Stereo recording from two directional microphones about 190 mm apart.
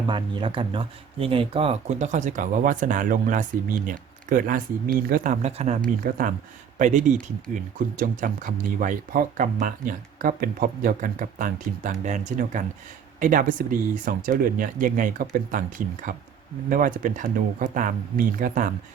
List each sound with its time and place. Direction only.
0.1 s speech: 25° right (ahead or behind); by 18.7 s 45° right (ahead or behind)